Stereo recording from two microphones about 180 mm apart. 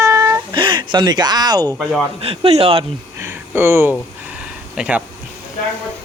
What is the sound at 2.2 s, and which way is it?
Speech, 30° right (ahead or behind).